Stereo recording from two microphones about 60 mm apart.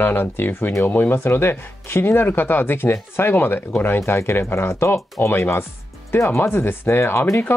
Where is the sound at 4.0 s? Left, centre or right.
Left.